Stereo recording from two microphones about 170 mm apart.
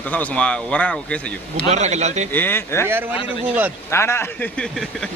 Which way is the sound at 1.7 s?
40° right (ahead or behind).